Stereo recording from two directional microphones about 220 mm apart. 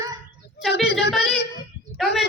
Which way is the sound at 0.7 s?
50° left (ahead or behind).